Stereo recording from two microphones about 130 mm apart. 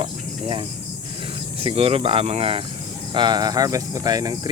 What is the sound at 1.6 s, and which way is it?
Speech, 50° right (ahead or behind).